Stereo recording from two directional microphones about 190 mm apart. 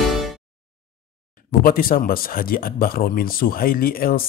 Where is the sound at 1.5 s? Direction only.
50° left (ahead or behind).